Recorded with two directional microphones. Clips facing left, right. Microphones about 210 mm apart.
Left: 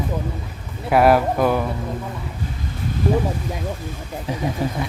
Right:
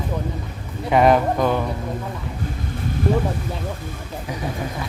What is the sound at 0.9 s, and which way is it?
Speech, 5° left (ahead or behind).